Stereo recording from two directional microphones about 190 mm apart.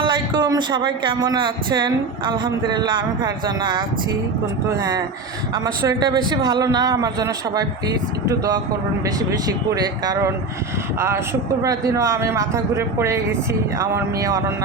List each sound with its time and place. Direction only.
0.0 s speech: 25° right (ahead or behind)
11.6 s a man's voice: 15° right (ahead or behind)